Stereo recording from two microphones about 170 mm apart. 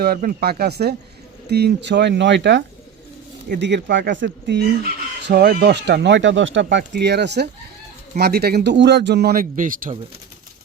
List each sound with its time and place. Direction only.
0.0 s speech: 60° right (ahead or behind); by 7.4 s 85° right
8.2 s a man's voice: 70° right (ahead or behind); by 10.0 s 55° right (ahead or behind)